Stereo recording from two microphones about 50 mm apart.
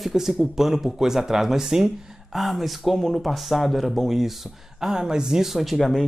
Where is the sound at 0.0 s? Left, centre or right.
Centre.